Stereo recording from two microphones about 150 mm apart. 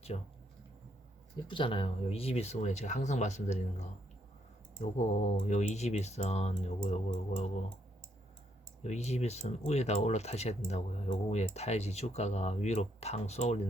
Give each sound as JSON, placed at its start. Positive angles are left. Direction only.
{"t": 0.1, "sound": "speech", "side_deg": 45}
{"t": 1.5, "sound": "speech", "side_deg": 35}
{"t": 8.8, "sound": "speech", "side_deg": 50}